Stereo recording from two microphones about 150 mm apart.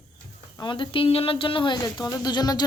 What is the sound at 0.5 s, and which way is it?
A woman's voice, 30° left (ahead or behind).